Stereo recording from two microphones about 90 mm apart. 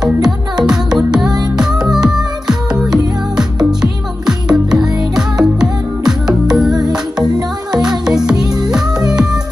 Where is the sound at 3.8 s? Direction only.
5° right (ahead or behind).